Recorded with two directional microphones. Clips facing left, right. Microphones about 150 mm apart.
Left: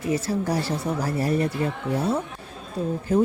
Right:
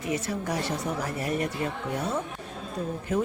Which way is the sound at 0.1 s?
30° left (ahead or behind).